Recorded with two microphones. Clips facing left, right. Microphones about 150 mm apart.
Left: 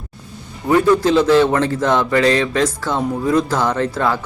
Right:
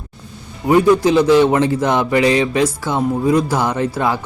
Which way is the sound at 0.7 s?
15° right (ahead or behind).